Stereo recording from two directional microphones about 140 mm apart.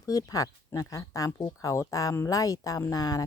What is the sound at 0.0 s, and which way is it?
Speech, 25° left (ahead or behind).